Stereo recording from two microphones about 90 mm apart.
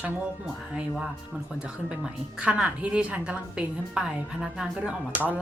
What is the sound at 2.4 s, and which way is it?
Speech, 10° right (ahead or behind).